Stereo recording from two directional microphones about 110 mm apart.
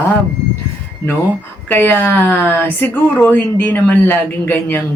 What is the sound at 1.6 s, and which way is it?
Speech, 20° left (ahead or behind).